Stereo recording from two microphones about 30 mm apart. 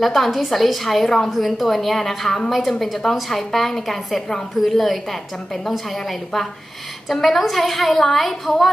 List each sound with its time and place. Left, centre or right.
0.0 s a woman's voice: centre
1.0 s a woman's voice: centre
1.3 s a woman's voice: centre